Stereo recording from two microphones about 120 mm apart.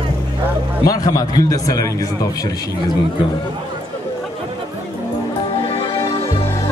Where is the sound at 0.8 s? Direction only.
30° left (ahead or behind).